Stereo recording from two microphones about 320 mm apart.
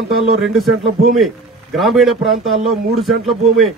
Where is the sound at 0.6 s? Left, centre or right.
Right.